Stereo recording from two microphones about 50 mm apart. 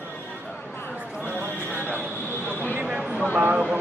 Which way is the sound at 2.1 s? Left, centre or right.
Left.